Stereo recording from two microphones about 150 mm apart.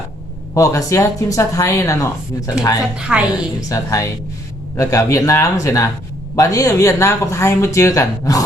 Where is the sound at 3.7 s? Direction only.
20° left (ahead or behind).